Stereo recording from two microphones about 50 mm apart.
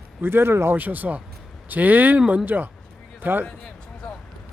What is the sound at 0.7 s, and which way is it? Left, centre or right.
Speech, right.